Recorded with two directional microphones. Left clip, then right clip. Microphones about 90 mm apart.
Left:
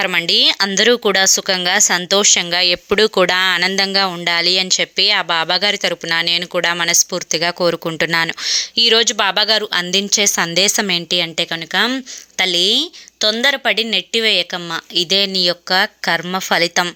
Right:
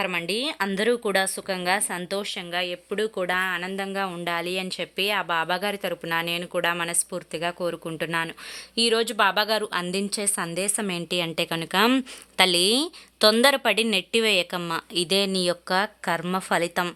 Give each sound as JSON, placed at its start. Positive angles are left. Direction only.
{"t": 0.0, "sound": "a woman's voice", "side_deg": 40}
{"t": 2.1, "sound": "speech", "side_deg": 60}
{"t": 3.7, "sound": "speech", "side_deg": 35}
{"t": 4.3, "sound": "a woman's voice", "side_deg": 25}
{"t": 8.4, "sound": "a woman's voice", "side_deg": 25}
{"t": 11.1, "sound": "speech", "side_deg": 0}
{"t": 13.1, "sound": "a woman's voice", "side_deg": -15}
{"t": 13.9, "sound": "speech", "side_deg": 0}
{"t": 16.0, "sound": "speech", "side_deg": 20}